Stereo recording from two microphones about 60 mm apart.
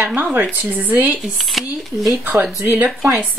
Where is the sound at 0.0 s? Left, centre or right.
Right.